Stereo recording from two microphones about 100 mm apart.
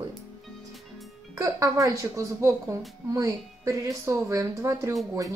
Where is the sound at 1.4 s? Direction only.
35° right (ahead or behind).